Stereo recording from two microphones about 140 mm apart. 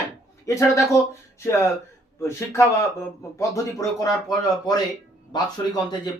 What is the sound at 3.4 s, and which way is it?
Speech, 25° left (ahead or behind).